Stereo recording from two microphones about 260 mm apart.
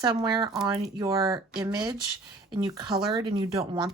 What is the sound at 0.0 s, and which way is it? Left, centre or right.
Speech, centre.